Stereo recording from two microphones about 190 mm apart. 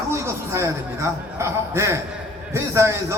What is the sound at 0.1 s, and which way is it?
A man's voice, 15° right (ahead or behind).